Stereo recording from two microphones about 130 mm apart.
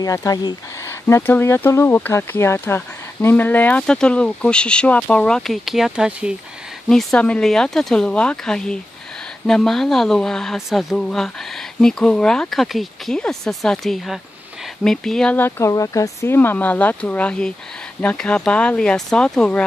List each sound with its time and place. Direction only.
0.0 s speech: 25° left (ahead or behind)
0.8 s speech: 20° left (ahead or behind); by 6.3 s 5° right (ahead or behind)
6.9 s speech: 5° left (ahead or behind)
15.3 s speech: 15° left (ahead or behind)